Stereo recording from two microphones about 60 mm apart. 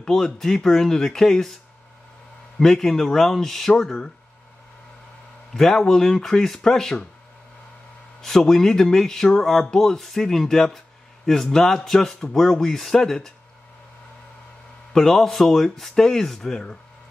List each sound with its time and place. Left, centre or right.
0.0 s speech: centre
2.6 s speech: centre
5.5 s speech: centre
8.2 s speech: centre
14.9 s speech: centre